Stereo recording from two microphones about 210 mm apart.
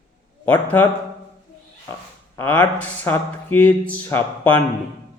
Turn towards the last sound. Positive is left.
turn(degrees=10)  # may be behind; listen again after turning